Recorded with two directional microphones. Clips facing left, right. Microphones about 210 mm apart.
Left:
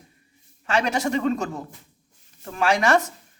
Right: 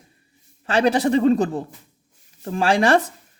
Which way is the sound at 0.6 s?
35° right (ahead or behind).